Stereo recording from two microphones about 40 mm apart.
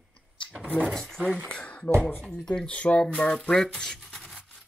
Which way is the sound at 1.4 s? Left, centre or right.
Left.